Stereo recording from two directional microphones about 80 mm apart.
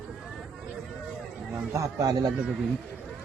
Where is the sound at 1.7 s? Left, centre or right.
Right.